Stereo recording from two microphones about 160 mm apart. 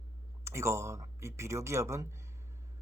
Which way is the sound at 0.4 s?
15° right (ahead or behind).